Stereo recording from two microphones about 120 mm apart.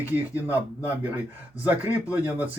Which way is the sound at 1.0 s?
15° right (ahead or behind).